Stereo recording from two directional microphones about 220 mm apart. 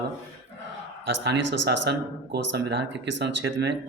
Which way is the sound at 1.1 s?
55° right (ahead or behind).